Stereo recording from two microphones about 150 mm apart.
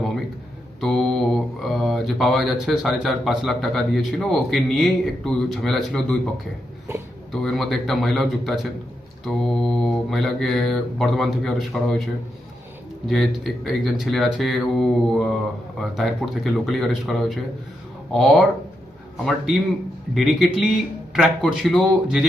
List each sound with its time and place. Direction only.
0.8 s speech: centre (ahead or behind)
6.9 s speech: 15° right (ahead or behind)
7.4 s mantra: centre (ahead or behind)
20.1 s mantra: centre (ahead or behind)